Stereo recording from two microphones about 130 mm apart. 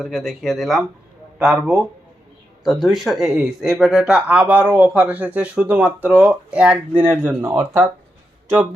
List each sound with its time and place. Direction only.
0.0 s speech: centre (ahead or behind)
2.8 s speech: centre (ahead or behind)
7.2 s speech: 20° right (ahead or behind)